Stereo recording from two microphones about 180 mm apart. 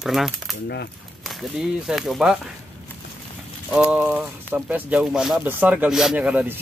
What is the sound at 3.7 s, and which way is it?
Speech, 5° right (ahead or behind).